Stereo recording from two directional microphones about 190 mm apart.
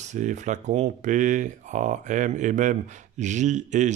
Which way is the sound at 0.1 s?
40° right (ahead or behind).